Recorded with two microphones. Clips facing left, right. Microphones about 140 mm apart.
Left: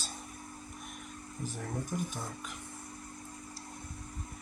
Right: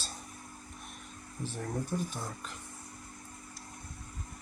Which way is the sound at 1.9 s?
10° right (ahead or behind).